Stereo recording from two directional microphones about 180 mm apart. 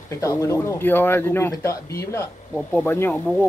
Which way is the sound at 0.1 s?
15° left (ahead or behind).